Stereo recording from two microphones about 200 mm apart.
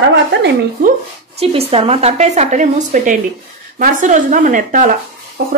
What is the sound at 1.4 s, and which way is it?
A woman's voice, 30° right (ahead or behind).